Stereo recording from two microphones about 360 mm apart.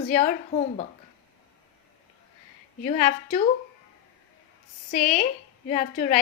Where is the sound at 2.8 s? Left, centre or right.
Centre.